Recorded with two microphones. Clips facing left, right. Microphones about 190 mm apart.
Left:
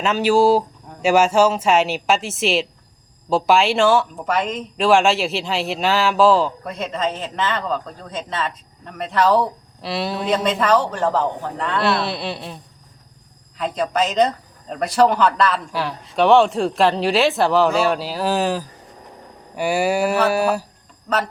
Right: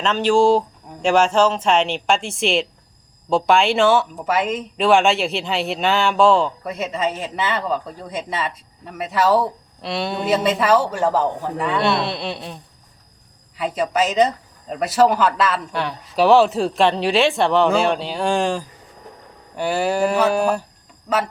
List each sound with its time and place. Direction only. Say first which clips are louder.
0.0 s a woman's voice: even; 10° left (ahead or behind)
13.6 s a woman's voice: right 1 dB; 5° right (ahead or behind)